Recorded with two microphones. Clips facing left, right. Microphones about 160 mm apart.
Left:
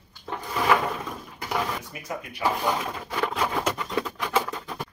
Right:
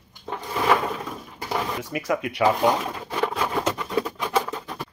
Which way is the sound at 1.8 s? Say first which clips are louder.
Right 10 dB; 90° right.